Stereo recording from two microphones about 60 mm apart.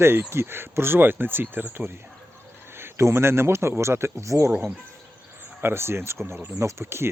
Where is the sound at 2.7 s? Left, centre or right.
Right.